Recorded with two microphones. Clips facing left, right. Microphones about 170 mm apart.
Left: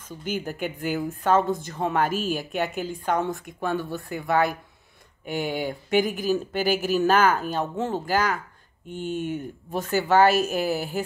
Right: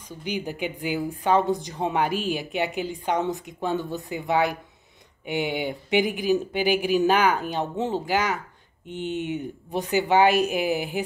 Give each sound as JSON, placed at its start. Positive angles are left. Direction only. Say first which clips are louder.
{"t": 0.7, "sound": "a woman's voice", "louder": "left 1 dB", "side_deg": -15}